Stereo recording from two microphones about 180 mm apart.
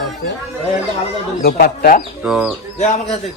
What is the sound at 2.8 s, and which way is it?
Speech, 40° left (ahead or behind).